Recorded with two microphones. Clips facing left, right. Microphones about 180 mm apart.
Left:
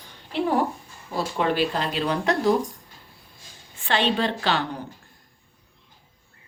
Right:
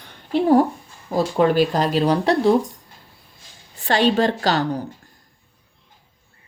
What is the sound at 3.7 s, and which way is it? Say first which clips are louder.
Speech: right 6 dB; 40° right (ahead or behind).